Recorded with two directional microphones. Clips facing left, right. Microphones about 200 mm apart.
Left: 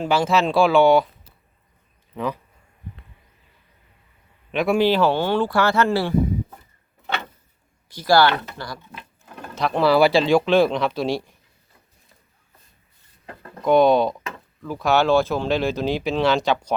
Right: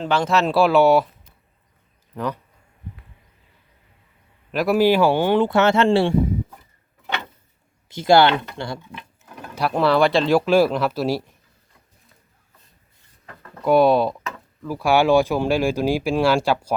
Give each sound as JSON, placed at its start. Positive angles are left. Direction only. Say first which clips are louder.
{"t": 0.0, "sound": "speech", "louder": "even", "side_deg": 5}
{"t": 2.1, "sound": "speech", "louder": "even", "side_deg": 5}
{"t": 4.5, "sound": "speech", "louder": "right 2 dB", "side_deg": 0}
{"t": 7.9, "sound": "speech", "louder": "right 2 dB", "side_deg": -25}
{"t": 9.3, "sound": "speech", "louder": "even", "side_deg": -5}
{"t": 13.6, "sound": "speech", "louder": "even", "side_deg": -5}